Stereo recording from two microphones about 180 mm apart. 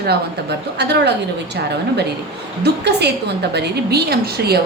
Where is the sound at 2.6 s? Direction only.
70° right (ahead or behind).